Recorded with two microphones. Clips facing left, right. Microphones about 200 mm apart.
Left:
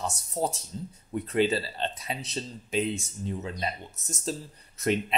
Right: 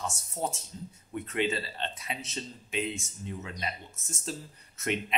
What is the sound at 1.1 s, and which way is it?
Speech, 35° left (ahead or behind).